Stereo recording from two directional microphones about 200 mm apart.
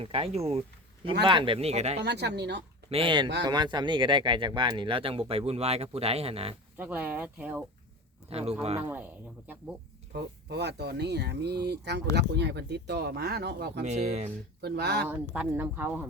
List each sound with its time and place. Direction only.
0.0 s speech: 30° right (ahead or behind)
2.0 s speech: 55° right (ahead or behind)
2.9 s speech: 25° right (ahead or behind)
6.7 s speech: 10° right (ahead or behind)
8.3 s speech: 30° right (ahead or behind)
10.1 s speech: 55° right (ahead or behind)
13.8 s speech: 35° right (ahead or behind)
14.6 s speech: 55° right (ahead or behind)
15.0 s speech: 10° right (ahead or behind)